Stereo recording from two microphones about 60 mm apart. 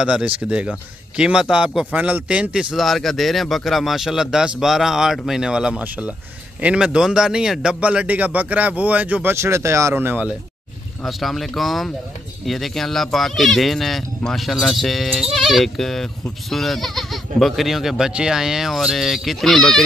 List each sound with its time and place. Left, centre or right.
0.0 s a man's voice: centre
2.7 s speech: centre
5.8 s a man's voice: right
9.3 s speech: right
9.9 s speech: right
11.1 s speech: centre